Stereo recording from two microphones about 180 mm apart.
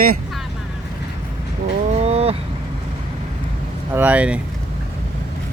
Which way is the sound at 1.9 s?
35° right (ahead or behind).